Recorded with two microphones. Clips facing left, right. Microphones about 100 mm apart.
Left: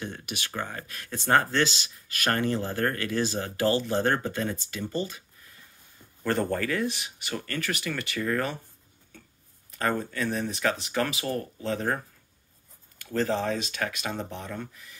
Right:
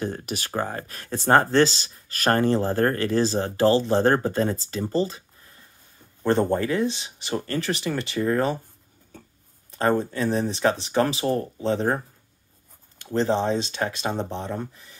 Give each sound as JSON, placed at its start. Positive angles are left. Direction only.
{"t": 0.0, "sound": "speech", "side_deg": -40}
{"t": 6.2, "sound": "speech", "side_deg": -25}
{"t": 9.7, "sound": "speech", "side_deg": -30}
{"t": 13.0, "sound": "speech", "side_deg": -25}